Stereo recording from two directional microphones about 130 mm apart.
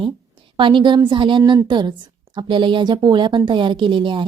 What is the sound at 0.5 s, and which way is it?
Speech, 40° right (ahead or behind).